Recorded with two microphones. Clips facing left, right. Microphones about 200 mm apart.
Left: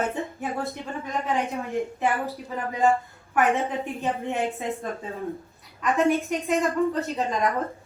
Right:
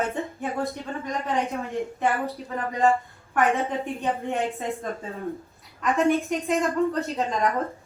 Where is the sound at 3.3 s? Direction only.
Centre (ahead or behind).